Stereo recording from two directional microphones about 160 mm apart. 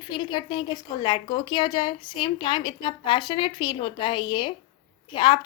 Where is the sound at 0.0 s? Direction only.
30° left (ahead or behind).